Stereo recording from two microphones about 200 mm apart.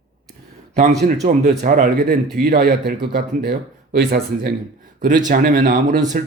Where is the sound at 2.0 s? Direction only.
50° right (ahead or behind).